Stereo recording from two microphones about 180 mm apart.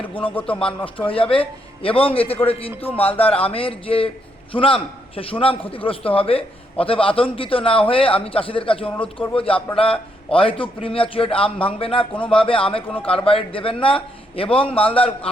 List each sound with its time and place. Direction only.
0.0 s a man's voice: 30° left (ahead or behind)